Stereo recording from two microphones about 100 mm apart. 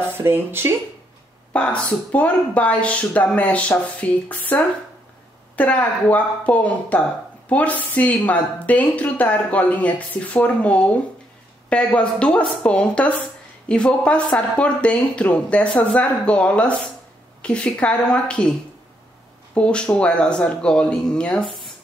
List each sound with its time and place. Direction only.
0.2 s speech: 20° right (ahead or behind)
1.5 s a woman's voice: 10° left (ahead or behind)
5.6 s a woman's voice: 15° left (ahead or behind)
19.5 s a woman's voice: 10° left (ahead or behind)